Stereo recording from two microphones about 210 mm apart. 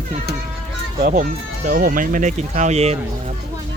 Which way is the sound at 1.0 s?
40° right (ahead or behind).